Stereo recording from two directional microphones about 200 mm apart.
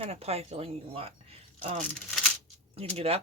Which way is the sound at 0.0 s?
30° right (ahead or behind).